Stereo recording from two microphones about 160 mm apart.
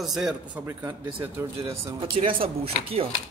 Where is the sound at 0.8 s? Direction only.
30° right (ahead or behind).